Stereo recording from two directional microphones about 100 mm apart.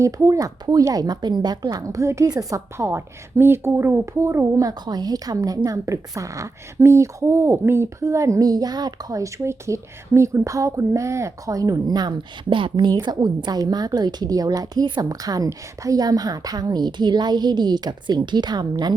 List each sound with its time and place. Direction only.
0.0 s a woman's voice: 30° right (ahead or behind)
4.7 s a woman's voice: 45° right (ahead or behind)